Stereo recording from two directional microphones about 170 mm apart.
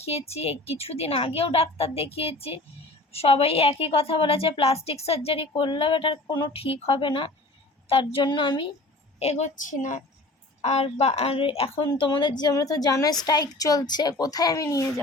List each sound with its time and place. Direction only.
0.0 s a woman's voice: 35° left (ahead or behind); by 15.0 s 20° left (ahead or behind)